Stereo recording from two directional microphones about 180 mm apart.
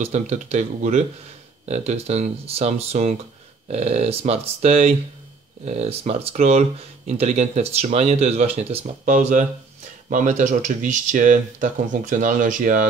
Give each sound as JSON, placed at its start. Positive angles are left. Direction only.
{"t": 0.0, "sound": "speech", "side_deg": -40}